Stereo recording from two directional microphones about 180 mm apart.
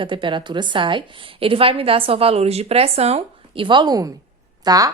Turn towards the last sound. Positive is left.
turn(degrees=-20)  # may be behind; listen again after turning